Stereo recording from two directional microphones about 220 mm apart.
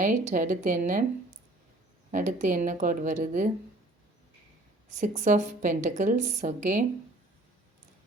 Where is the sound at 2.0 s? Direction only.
35° right (ahead or behind).